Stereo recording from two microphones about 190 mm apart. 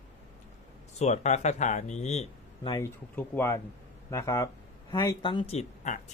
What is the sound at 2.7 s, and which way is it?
Speech, 15° left (ahead or behind).